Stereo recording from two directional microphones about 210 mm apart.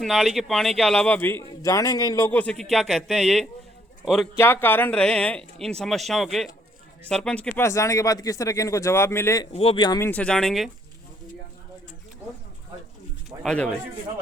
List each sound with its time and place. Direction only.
0.0 s a man's voice: centre (ahead or behind)
4.4 s a man's voice: 10° left (ahead or behind)
9.5 s speech: 25° left (ahead or behind)
10.1 s a man's voice: 5° left (ahead or behind)
13.4 s speech: 5° left (ahead or behind)